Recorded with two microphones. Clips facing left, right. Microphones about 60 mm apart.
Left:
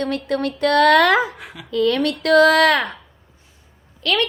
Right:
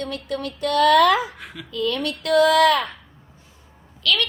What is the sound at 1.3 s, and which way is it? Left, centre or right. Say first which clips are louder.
Speech: left 1 dB; centre.